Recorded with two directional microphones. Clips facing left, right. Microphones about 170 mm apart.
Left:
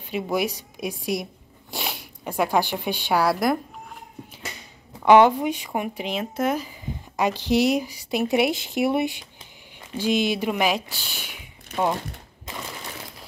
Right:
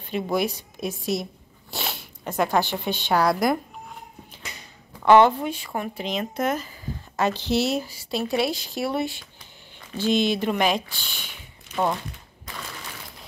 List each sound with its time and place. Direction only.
0.0 s speech: 10° left (ahead or behind)
5.0 s speech: 15° left (ahead or behind)
12.4 s a sound: 20° left (ahead or behind)